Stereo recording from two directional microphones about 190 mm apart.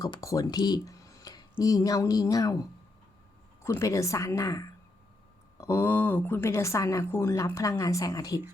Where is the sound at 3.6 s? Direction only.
15° left (ahead or behind).